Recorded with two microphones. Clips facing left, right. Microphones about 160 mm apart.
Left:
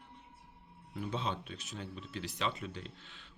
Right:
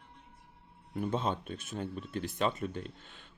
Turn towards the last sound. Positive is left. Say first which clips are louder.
# right 5 dB
turn(degrees=-50)  # may be behind; listen again after turning